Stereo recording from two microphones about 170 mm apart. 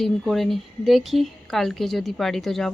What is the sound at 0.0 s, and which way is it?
A woman's voice, centre (ahead or behind).